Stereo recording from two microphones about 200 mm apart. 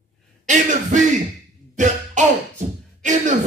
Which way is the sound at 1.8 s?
35° right (ahead or behind).